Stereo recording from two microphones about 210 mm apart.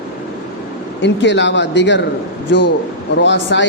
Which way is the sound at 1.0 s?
60° left (ahead or behind).